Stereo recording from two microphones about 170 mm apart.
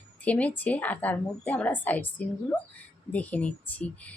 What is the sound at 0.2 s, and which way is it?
Speech, 10° left (ahead or behind).